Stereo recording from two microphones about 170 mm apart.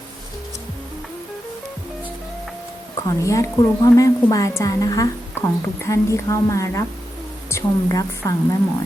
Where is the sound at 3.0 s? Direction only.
20° left (ahead or behind).